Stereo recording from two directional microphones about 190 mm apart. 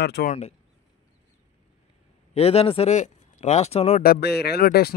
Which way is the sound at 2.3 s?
30° left (ahead or behind).